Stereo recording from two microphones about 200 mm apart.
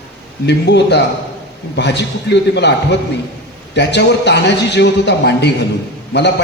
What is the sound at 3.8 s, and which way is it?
A man's voice, 60° left (ahead or behind).